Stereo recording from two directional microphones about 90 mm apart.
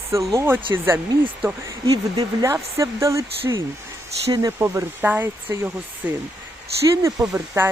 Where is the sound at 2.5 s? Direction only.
35° right (ahead or behind).